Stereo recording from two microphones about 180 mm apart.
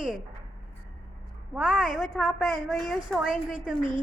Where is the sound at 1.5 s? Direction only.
5° right (ahead or behind).